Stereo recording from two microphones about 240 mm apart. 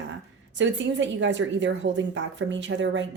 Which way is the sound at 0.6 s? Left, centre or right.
Right.